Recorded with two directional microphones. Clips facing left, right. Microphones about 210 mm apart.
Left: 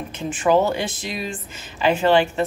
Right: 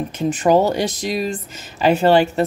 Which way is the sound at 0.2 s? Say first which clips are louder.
Right 3 dB; 40° right (ahead or behind).